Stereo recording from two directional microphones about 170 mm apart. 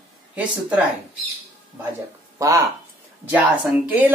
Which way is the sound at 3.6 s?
10° right (ahead or behind).